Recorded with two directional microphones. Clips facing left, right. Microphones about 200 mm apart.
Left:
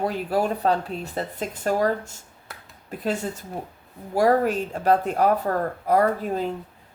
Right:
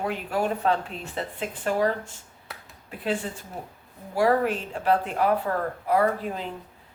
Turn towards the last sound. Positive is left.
turn(degrees=40)  # may be behind; listen again after turning